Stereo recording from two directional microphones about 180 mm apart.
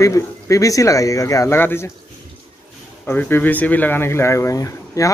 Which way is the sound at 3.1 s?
10° left (ahead or behind).